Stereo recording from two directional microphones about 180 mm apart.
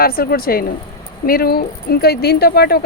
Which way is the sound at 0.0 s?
55° left (ahead or behind).